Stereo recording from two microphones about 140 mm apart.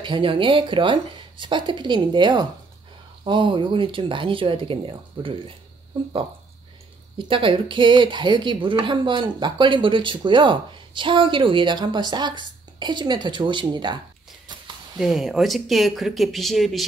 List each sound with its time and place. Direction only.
0.0 s speech: 35° right (ahead or behind)
7.2 s speech: 40° right (ahead or behind)
15.0 s speech: centre (ahead or behind)